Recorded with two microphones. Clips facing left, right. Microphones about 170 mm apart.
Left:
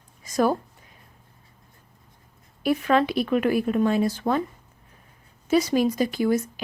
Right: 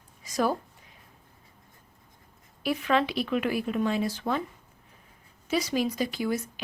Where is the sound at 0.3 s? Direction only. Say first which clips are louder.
Left 5 dB; 50° left (ahead or behind).